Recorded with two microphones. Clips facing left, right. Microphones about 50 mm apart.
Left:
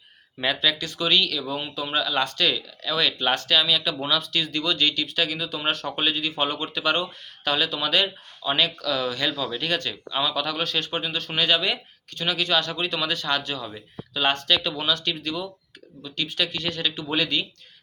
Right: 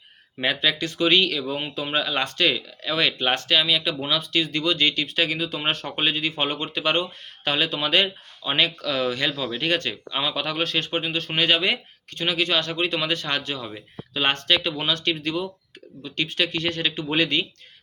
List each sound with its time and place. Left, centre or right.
0.3 s speech: right
9.9 s speech: right